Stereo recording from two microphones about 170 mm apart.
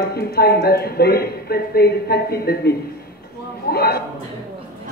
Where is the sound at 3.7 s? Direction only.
70° left (ahead or behind).